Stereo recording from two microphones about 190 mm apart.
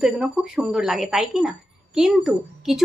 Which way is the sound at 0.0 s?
5° right (ahead or behind).